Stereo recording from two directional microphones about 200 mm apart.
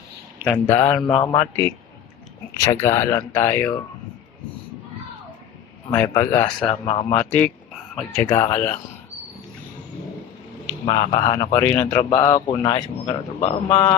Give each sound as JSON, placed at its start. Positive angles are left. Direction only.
{"t": 0.4, "sound": "speech", "side_deg": 10}
{"t": 1.0, "sound": "speech", "side_deg": 25}
{"t": 1.4, "sound": "speech", "side_deg": 10}
{"t": 5.9, "sound": "speech", "side_deg": 10}
{"t": 6.8, "sound": "speech", "side_deg": 25}
{"t": 7.1, "sound": "speech", "side_deg": 5}
{"t": 10.8, "sound": "speech", "side_deg": 30}
{"t": 11.3, "sound": "speech", "side_deg": 15}